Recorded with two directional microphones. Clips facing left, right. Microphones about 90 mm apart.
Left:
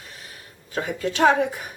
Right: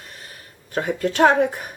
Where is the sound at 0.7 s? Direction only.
50° right (ahead or behind).